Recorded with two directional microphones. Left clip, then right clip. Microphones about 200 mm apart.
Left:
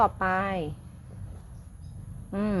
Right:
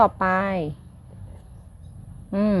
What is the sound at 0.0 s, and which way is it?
Speech, 45° right (ahead or behind).